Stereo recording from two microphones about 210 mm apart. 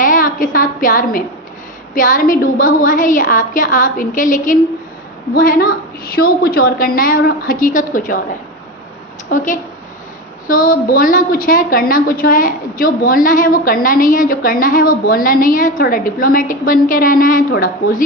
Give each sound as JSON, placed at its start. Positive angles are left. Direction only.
{"t": 0.0, "sound": "a woman's voice", "side_deg": 40}
{"t": 9.3, "sound": "a woman's voice", "side_deg": 35}